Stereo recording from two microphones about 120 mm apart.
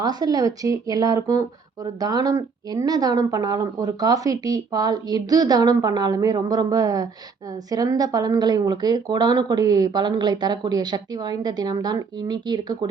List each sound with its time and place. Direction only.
0.0 s speech: 35° right (ahead or behind)